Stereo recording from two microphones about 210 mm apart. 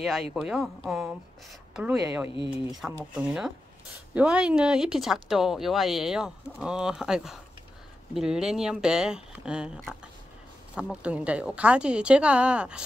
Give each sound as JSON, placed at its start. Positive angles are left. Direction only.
{"t": 0.0, "sound": "speech", "side_deg": 0}
{"t": 2.2, "sound": "speech", "side_deg": 25}
{"t": 2.8, "sound": "speech", "side_deg": -5}